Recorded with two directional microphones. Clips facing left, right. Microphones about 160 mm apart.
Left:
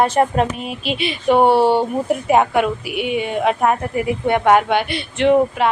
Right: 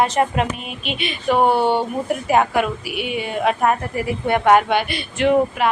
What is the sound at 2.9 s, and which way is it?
Speech, 20° left (ahead or behind).